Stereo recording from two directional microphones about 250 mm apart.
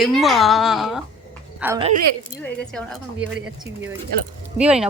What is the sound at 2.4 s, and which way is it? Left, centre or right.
Speech, centre.